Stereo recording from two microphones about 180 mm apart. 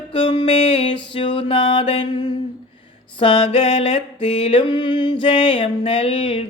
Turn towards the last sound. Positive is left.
turn(degrees=30)  # may be behind; listen again after turning